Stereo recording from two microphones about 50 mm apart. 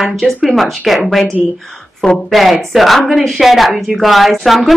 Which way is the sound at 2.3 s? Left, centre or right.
Centre.